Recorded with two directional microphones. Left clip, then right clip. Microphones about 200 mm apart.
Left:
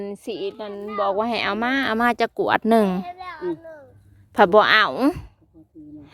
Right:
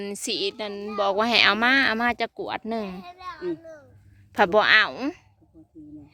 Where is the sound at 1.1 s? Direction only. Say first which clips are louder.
Right 5 dB; 5° left (ahead or behind); by 2.3 s 20° left (ahead or behind).